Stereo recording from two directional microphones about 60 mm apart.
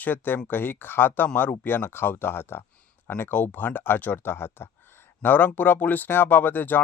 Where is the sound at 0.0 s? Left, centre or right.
Left.